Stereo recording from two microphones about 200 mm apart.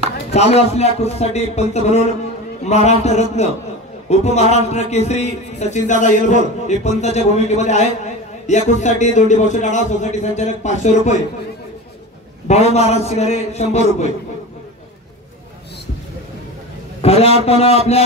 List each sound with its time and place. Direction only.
0.3 s a man's voice: 35° left (ahead or behind)
12.4 s a man's voice: 35° left (ahead or behind)
17.0 s a man's voice: 30° left (ahead or behind)